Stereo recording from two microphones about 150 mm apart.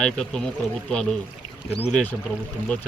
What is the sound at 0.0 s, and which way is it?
Speech, 5° left (ahead or behind).